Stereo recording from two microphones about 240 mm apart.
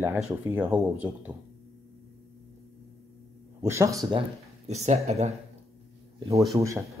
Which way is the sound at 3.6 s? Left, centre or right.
Centre.